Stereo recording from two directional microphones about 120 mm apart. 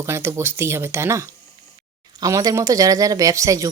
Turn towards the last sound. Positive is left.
turn(degrees=-25)  # may be behind; listen again after turning